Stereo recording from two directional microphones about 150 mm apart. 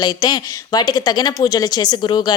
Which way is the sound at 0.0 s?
30° left (ahead or behind).